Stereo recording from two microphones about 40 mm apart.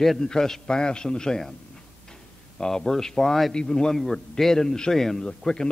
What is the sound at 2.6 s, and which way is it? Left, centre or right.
A man's voice, centre.